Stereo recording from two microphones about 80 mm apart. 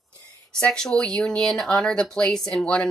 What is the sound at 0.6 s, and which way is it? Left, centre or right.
Speech, centre.